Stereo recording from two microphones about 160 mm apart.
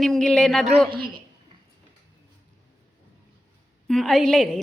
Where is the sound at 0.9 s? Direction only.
70° right (ahead or behind).